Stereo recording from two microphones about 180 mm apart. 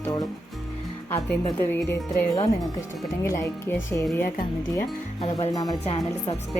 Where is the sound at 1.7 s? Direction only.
10° left (ahead or behind).